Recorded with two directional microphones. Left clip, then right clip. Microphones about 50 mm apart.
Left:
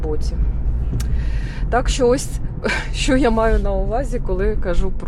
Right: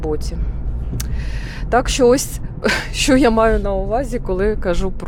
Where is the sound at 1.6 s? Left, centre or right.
Right.